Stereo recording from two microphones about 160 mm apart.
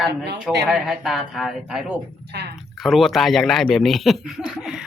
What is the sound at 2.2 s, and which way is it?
Speech, 90° right.